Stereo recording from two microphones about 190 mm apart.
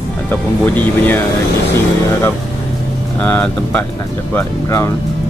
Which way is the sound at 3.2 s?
5° left (ahead or behind).